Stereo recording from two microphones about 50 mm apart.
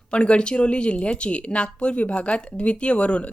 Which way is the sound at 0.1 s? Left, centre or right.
Left.